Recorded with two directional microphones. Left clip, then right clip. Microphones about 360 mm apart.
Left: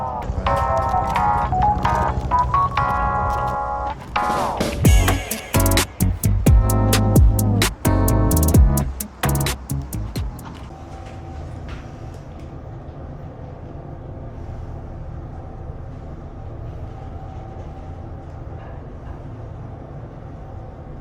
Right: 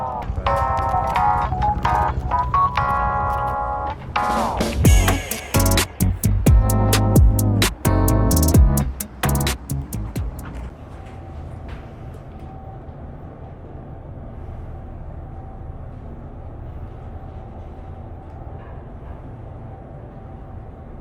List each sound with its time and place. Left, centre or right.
0.0 s music: centre